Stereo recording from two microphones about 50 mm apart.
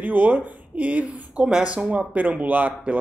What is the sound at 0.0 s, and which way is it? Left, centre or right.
Speech, right.